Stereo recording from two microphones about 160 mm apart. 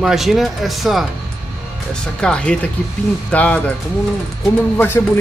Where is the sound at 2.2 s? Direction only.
5° left (ahead or behind).